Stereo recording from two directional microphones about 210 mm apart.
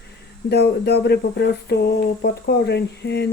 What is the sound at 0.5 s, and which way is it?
Speech, 50° left (ahead or behind).